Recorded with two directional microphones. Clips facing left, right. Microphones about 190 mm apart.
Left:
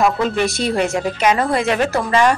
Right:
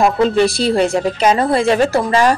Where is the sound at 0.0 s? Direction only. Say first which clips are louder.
Right 4 dB; 30° right (ahead or behind).